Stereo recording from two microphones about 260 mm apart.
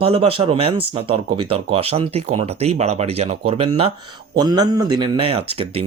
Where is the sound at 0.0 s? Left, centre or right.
Right.